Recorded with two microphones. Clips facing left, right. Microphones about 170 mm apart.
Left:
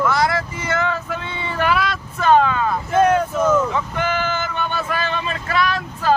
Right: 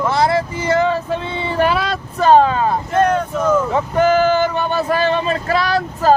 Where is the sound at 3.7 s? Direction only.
40° right (ahead or behind).